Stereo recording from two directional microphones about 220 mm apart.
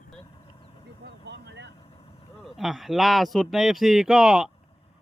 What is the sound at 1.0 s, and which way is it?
Vehicle, 50° right (ahead or behind).